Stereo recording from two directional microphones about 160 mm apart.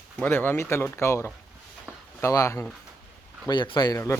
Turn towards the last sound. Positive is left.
turn(degrees=20)  # may be behind; listen again after turning